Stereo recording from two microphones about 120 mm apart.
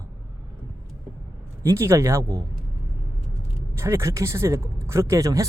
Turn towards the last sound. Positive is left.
turn(degrees=-25)  # may be behind; listen again after turning